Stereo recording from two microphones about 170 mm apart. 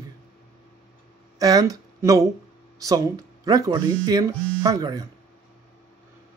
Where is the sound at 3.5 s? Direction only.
25° right (ahead or behind).